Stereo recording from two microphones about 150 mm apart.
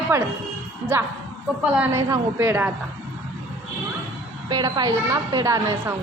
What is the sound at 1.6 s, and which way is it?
Speech, 5° right (ahead or behind).